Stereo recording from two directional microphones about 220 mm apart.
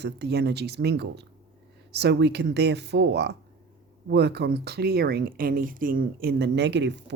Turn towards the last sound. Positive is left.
turn(degrees=-55)  # may be behind; listen again after turning